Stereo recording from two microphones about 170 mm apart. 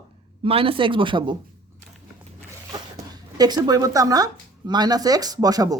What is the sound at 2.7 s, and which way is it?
Speech, 20° right (ahead or behind).